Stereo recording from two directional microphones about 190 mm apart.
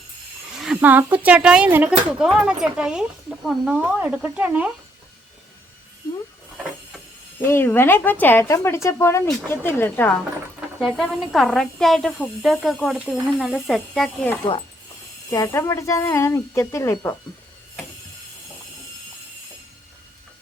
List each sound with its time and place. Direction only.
0.5 s speech: 5° right (ahead or behind)
7.4 s speech: 10° left (ahead or behind)
10.8 s speech: centre (ahead or behind)
15.3 s speech: 20° left (ahead or behind)